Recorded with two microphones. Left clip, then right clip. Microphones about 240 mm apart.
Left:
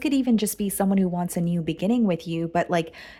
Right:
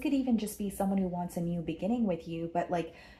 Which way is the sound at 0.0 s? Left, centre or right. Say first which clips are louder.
Left 8 dB; left.